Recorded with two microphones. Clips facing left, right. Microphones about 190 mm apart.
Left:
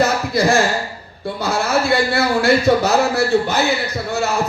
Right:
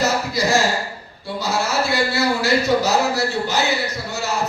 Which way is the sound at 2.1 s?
55° left (ahead or behind).